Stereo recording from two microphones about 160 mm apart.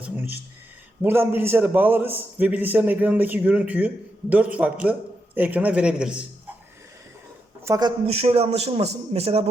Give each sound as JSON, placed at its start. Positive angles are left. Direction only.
{"t": 0.0, "sound": "a sound", "side_deg": -10}
{"t": 1.0, "sound": "a man's voice", "side_deg": -15}
{"t": 7.6, "sound": "speech", "side_deg": -20}
{"t": 8.0, "sound": "a man's voice", "side_deg": -40}